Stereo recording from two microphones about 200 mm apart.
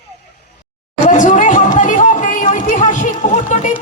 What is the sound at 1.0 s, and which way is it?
Chatter, 40° left (ahead or behind).